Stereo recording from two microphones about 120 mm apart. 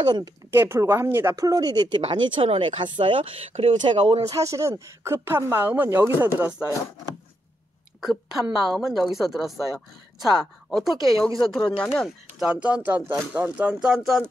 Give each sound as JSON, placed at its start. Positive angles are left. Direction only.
{"t": 0.0, "sound": "speech", "side_deg": -35}
{"t": 0.5, "sound": "speech", "side_deg": -20}
{"t": 1.4, "sound": "speech", "side_deg": -30}
{"t": 2.2, "sound": "speech", "side_deg": -50}
{"t": 3.8, "sound": "speech", "side_deg": -40}
{"t": 4.3, "sound": "speech", "side_deg": -25}
{"t": 8.0, "sound": "a woman's voice", "side_deg": -5}
{"t": 11.0, "sound": "speech", "side_deg": -30}
{"t": 11.3, "sound": "speech", "side_deg": 5}
{"t": 12.4, "sound": "speech", "side_deg": -10}